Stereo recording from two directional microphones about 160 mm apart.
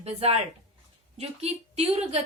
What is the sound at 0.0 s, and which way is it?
A woman's voice, 40° right (ahead or behind).